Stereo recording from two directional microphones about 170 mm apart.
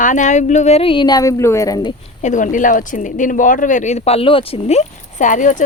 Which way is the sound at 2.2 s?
50° left (ahead or behind).